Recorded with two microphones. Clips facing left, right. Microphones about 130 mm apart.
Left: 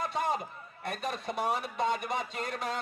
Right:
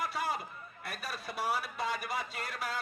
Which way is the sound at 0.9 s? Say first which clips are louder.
Left 7 dB; 25° left (ahead or behind).